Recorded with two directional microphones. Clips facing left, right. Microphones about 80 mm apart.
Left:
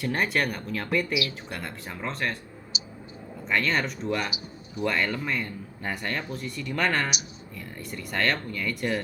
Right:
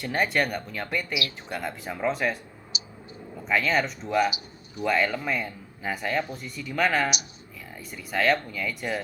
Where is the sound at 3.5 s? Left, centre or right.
Centre.